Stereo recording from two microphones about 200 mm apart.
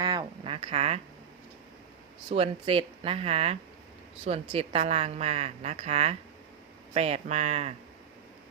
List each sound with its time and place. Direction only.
0.0 s speech: 20° right (ahead or behind)
2.3 s a woman's voice: 30° right (ahead or behind)